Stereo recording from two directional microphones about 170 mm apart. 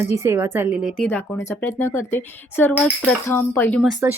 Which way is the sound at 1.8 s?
15° left (ahead or behind).